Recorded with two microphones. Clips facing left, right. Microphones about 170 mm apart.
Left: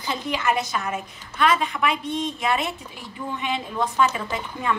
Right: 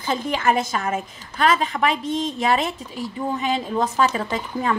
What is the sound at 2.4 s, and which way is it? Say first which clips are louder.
A woman's voice: right 5 dB; 35° right (ahead or behind).